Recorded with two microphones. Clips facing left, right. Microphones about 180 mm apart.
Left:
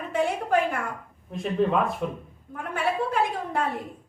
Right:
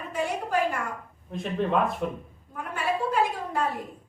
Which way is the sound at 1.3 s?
Centre (ahead or behind).